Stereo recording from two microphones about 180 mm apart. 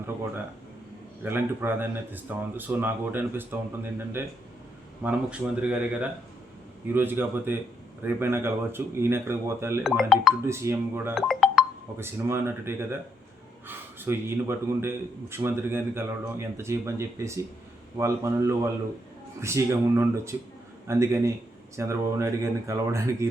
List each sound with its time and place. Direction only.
1.2 s a man's voice: 10° right (ahead or behind)
10.0 s speech: centre (ahead or behind)
10.4 s a man's voice: 15° right (ahead or behind)
11.1 s music: centre (ahead or behind)
11.9 s a man's voice: 15° right (ahead or behind)